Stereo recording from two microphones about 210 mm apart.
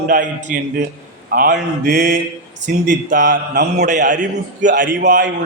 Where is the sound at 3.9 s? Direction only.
35° right (ahead or behind).